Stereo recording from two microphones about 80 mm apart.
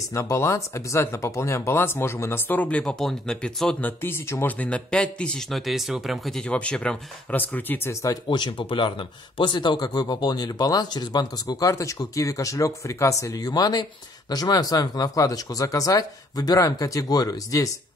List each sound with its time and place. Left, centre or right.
0.1 s speech: left
2.8 s a man's voice: centre
3.8 s speech: left
4.6 s a man's voice: centre
5.5 s speech: centre
6.4 s a man's voice: centre
7.3 s speech: left
7.9 s speech: left
8.3 s speech: left